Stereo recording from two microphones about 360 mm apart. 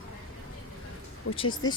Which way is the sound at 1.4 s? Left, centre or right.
Centre.